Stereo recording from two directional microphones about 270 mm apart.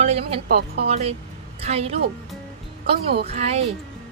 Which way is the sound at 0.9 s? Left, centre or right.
Right.